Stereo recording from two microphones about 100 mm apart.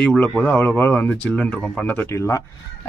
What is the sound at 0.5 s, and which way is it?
Speech, 15° left (ahead or behind).